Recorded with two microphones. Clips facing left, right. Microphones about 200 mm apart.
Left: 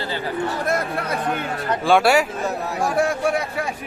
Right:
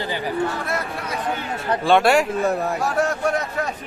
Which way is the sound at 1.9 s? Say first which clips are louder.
Even; centre (ahead or behind).